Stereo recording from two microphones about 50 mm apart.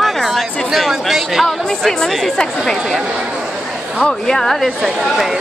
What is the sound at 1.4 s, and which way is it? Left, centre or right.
Speech, centre.